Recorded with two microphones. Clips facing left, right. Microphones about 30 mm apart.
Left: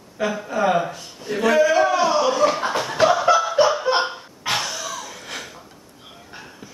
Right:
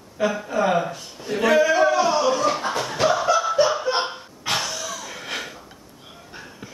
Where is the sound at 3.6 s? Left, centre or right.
Centre.